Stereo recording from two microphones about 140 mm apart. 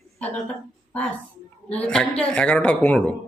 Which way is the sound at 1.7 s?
5° left (ahead or behind).